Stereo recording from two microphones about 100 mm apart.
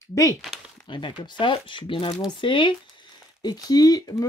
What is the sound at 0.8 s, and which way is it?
Speech, 55° left (ahead or behind).